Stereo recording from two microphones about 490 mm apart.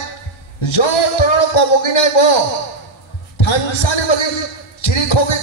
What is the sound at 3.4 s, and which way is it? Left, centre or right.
A man's voice, left.